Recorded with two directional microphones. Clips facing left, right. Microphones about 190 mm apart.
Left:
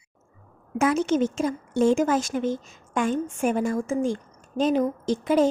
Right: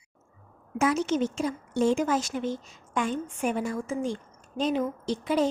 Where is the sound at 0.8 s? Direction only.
55° left (ahead or behind).